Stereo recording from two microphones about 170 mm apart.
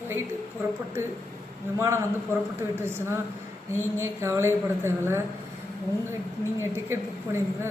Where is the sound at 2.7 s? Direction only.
15° right (ahead or behind).